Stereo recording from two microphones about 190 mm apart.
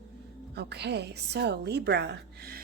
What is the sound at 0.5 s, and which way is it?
A woman's voice, 60° right (ahead or behind).